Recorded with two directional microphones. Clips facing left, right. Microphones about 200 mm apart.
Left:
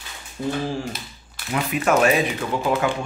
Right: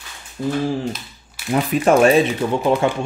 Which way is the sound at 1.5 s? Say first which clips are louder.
Right 5 dB; 35° right (ahead or behind).